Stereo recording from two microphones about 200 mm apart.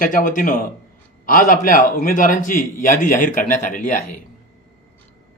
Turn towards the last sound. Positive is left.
turn(degrees=40)  # may be behind; listen again after turning